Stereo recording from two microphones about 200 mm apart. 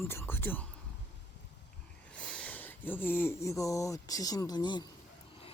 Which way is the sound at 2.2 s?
5° left (ahead or behind).